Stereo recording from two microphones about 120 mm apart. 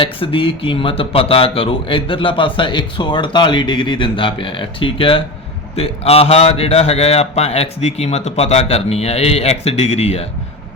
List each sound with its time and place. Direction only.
0.0 s a man's voice: 45° left (ahead or behind)